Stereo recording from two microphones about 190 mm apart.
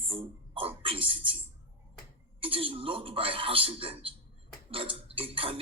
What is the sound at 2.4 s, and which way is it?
Music, 30° right (ahead or behind).